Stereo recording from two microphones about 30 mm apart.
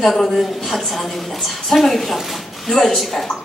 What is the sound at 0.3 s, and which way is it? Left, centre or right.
A woman's voice, centre.